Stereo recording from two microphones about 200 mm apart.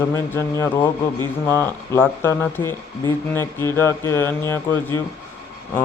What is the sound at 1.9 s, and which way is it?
Speech, 10° left (ahead or behind).